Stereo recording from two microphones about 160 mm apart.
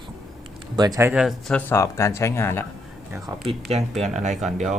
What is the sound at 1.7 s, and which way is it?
Speech, 15° left (ahead or behind).